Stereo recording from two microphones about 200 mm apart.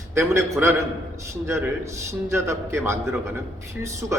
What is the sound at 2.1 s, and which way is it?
A man's voice, 15° right (ahead or behind).